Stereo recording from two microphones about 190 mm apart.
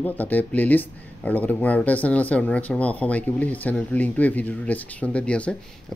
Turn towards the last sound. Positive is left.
turn(degrees=5)  # may be behind; listen again after turning